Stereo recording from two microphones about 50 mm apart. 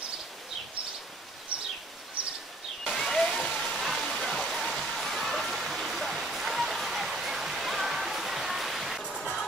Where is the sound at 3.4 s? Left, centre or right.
Centre.